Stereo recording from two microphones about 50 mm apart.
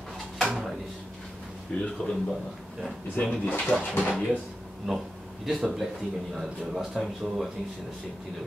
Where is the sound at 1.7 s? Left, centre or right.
Left.